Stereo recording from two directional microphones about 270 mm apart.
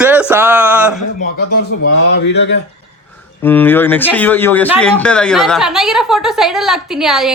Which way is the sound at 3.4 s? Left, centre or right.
Centre.